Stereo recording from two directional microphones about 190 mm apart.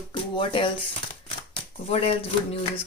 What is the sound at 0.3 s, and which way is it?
Speech, 25° left (ahead or behind).